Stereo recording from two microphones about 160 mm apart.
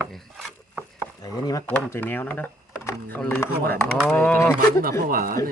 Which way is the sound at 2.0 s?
10° left (ahead or behind).